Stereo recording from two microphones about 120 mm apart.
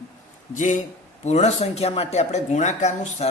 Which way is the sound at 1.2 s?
65° left (ahead or behind).